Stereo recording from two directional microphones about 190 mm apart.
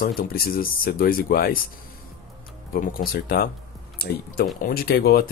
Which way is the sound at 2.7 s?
50° left (ahead or behind).